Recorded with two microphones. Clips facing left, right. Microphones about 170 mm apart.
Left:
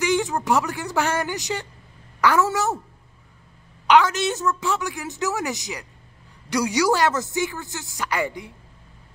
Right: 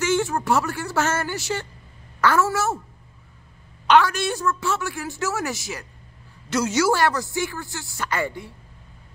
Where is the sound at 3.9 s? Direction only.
20° left (ahead or behind).